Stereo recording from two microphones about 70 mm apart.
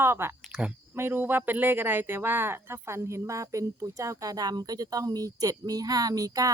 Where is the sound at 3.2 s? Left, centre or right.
Right.